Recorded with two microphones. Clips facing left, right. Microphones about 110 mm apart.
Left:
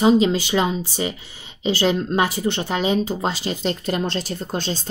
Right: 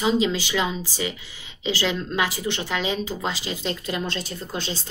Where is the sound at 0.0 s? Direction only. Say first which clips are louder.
Left 6 dB; 40° left (ahead or behind).